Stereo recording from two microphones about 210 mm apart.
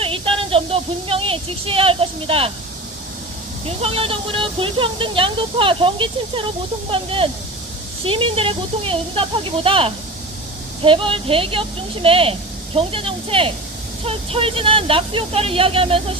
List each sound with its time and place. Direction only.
0.0 s a woman's voice: 25° right (ahead or behind)
3.8 s speech: 25° right (ahead or behind)